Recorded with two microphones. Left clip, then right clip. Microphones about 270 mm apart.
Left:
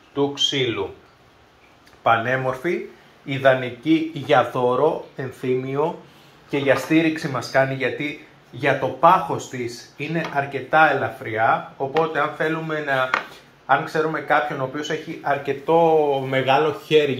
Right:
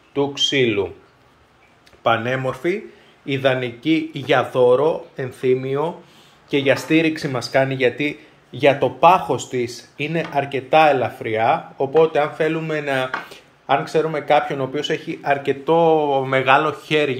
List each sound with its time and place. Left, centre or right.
0.1 s speech: right
2.0 s speech: right
4.2 s speech: right; by 17.2 s centre